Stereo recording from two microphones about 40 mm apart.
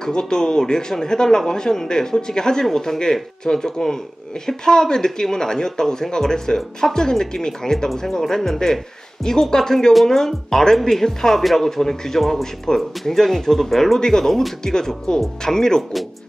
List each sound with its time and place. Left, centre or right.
0.0 s speech: centre
13.9 s speech: centre